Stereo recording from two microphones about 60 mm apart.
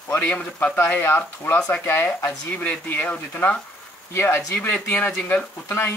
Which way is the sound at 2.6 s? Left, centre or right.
Left.